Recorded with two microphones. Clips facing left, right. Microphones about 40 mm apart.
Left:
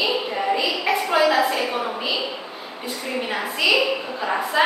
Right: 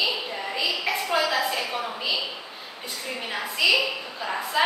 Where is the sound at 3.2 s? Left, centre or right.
Centre.